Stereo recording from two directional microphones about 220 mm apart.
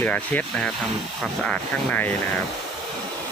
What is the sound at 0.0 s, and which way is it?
Speech, 5° left (ahead or behind).